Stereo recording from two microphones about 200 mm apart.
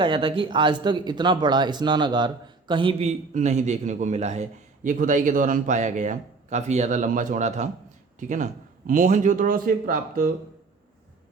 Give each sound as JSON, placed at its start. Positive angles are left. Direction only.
{"t": 0.0, "sound": "speech", "side_deg": -25}